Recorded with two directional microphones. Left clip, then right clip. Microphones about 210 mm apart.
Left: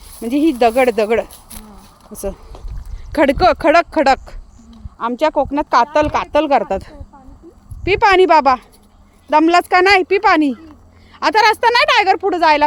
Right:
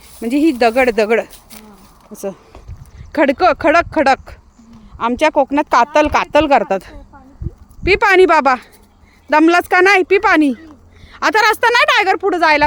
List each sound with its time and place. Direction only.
0.2 s speech: 10° right (ahead or behind)
1.3 s a sound: 5° left (ahead or behind)
2.1 s speech: 5° right (ahead or behind)
4.9 s speech: 25° right (ahead or behind)